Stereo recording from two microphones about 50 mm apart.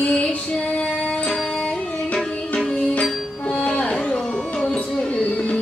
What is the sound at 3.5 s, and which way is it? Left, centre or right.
Music, left.